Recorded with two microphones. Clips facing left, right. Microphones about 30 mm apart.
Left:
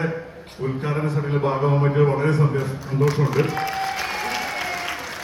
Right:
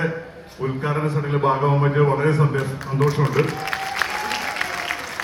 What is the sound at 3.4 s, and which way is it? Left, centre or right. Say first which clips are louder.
Speech: right 1 dB; right.